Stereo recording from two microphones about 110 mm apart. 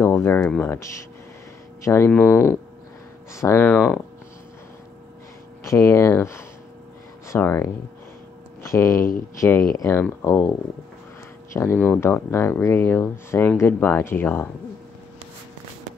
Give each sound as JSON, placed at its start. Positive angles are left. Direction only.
{"t": 0.0, "sound": "speech", "side_deg": 25}
{"t": 2.0, "sound": "speech", "side_deg": 20}
{"t": 5.6, "sound": "speech", "side_deg": 30}
{"t": 8.6, "sound": "speech", "side_deg": 30}
{"t": 11.5, "sound": "speech", "side_deg": 20}